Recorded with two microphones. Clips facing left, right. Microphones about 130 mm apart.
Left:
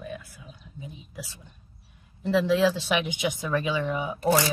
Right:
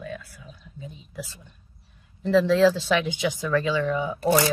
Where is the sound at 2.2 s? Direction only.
10° left (ahead or behind).